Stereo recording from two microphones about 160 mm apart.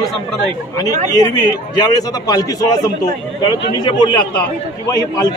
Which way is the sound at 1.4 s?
25° left (ahead or behind).